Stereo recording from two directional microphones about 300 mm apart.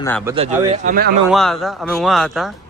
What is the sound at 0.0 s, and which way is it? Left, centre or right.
Speech, centre.